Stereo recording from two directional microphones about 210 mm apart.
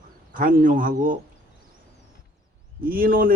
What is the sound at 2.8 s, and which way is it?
Speech, 45° right (ahead or behind).